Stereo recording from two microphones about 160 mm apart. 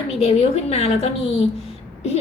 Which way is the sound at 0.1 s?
40° left (ahead or behind).